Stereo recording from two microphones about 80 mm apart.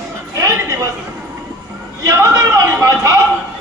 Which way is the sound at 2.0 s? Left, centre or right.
Right.